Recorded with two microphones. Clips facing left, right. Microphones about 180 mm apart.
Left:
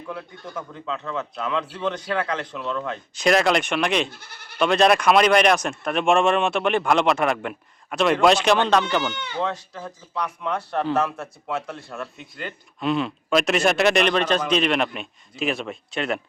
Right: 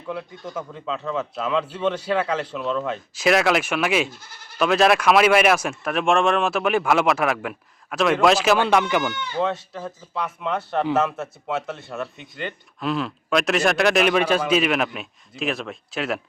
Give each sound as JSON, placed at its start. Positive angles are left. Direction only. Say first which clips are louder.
{"t": 0.1, "sound": "speech", "louder": "right 4 dB", "side_deg": -5}
{"t": 4.1, "sound": "speech", "louder": "even", "side_deg": 65}
{"t": 4.5, "sound": "speech", "louder": "even", "side_deg": -5}